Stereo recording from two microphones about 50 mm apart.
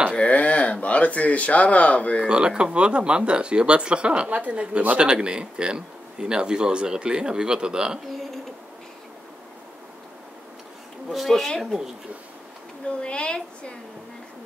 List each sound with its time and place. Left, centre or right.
0.1 s a sound: left
2.2 s speech: centre
11.1 s speech: centre
12.8 s a woman's voice: left